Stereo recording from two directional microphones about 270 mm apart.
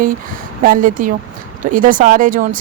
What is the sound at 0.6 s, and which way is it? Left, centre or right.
Speech, right.